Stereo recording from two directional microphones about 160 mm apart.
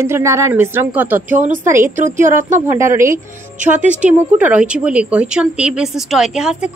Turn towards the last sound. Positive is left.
turn(degrees=-5)  # may be behind; listen again after turning